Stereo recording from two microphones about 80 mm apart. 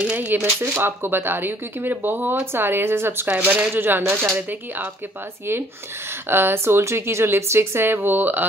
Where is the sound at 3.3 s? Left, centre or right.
Centre.